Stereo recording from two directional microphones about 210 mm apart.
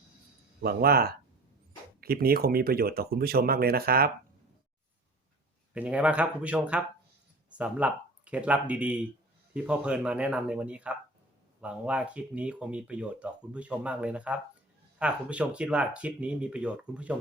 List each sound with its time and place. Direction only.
0.6 s speech: 45° right (ahead or behind)
5.7 s speech: 5° right (ahead or behind)